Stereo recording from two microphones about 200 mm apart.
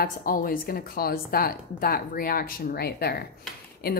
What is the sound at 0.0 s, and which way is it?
Speech, 45° left (ahead or behind).